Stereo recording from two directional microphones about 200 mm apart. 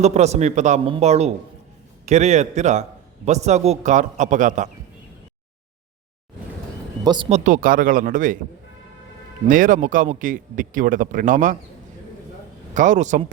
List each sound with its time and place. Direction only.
0.0 s speech: 35° right (ahead or behind)
7.0 s speech: 20° right (ahead or behind)
7.3 s speech: 35° right (ahead or behind)
9.5 s speech: 40° right (ahead or behind)
12.7 s speech: 40° right (ahead or behind)